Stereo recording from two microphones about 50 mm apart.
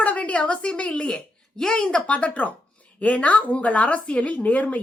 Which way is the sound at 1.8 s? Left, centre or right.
Left.